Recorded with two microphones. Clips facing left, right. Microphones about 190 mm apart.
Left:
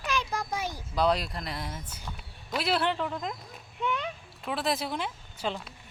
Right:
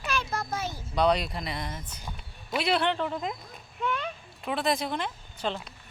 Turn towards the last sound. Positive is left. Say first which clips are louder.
# right 1 dB
turn(degrees=5)  # may be behind; listen again after turning